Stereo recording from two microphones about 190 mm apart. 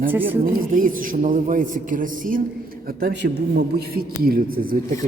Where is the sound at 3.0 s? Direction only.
60° right (ahead or behind).